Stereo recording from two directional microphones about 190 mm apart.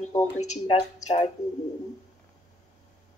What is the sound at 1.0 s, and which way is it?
Speech, 35° left (ahead or behind).